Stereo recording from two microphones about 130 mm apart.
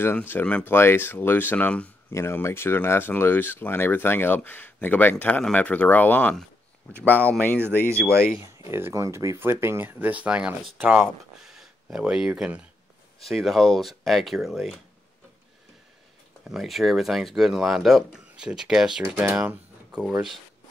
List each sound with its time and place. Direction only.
0.3 s speech: 10° left (ahead or behind)
7.9 s speech: 20° right (ahead or behind); by 14.8 s centre (ahead or behind)
16.4 s speech: centre (ahead or behind)